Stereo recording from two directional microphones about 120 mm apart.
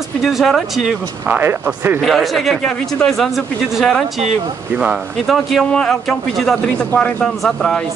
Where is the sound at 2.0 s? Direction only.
Centre (ahead or behind).